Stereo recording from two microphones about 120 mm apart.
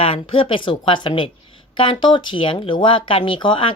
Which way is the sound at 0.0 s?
50° left (ahead or behind).